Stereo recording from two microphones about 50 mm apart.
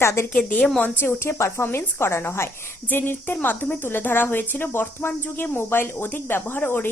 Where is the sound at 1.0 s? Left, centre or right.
Left.